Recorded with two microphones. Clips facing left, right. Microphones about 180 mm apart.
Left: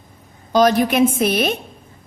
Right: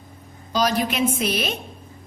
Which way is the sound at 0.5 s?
55° left (ahead or behind).